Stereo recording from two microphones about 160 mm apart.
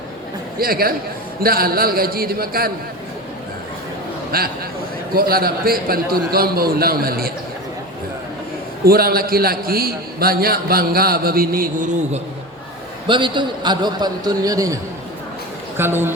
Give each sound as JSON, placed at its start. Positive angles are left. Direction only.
{"t": 0.6, "sound": "a man's voice", "side_deg": -70}
{"t": 4.3, "sound": "a man's voice", "side_deg": -70}
{"t": 8.8, "sound": "a man's voice", "side_deg": -70}
{"t": 13.1, "sound": "a man's voice", "side_deg": -30}
{"t": 15.8, "sound": "speech", "side_deg": -15}